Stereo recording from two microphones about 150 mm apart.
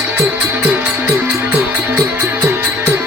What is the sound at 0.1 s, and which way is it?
Music, 10° right (ahead or behind).